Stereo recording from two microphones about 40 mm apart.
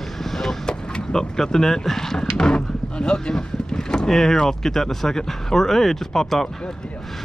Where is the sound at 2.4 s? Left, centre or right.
Left.